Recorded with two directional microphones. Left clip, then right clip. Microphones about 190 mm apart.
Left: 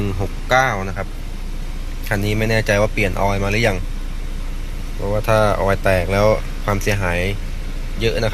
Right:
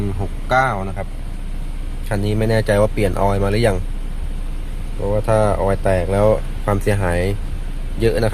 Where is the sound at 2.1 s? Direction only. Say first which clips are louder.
Even; 15° right (ahead or behind).